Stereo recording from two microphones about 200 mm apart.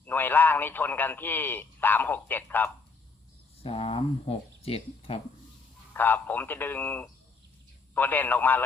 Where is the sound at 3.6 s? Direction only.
30° left (ahead or behind).